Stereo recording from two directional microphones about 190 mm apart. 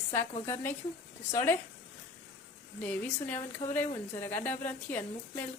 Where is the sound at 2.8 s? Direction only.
10° left (ahead or behind).